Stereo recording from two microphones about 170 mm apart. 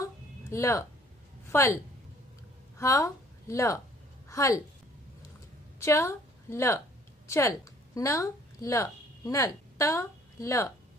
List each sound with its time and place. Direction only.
0.0 s a sound: 15° left (ahead or behind)
1.5 s a woman's voice: 15° left (ahead or behind)
2.8 s a woman's voice: 20° left (ahead or behind)
5.8 s a woman's voice: 15° left (ahead or behind)